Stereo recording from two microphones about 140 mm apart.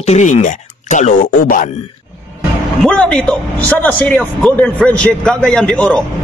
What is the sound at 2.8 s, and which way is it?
A man's voice, 5° left (ahead or behind).